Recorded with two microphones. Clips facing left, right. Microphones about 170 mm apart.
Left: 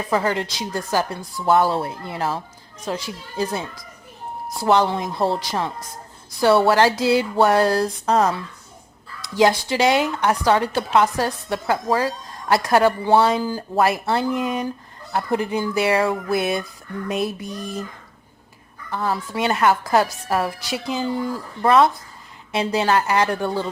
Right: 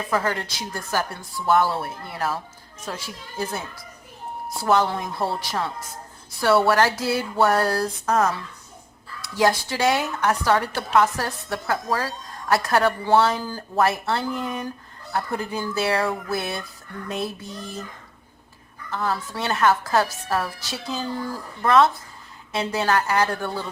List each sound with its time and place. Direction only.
0.1 s a woman's voice: 20° left (ahead or behind)
9.4 s a woman's voice: 20° left (ahead or behind)
18.9 s a woman's voice: 15° left (ahead or behind)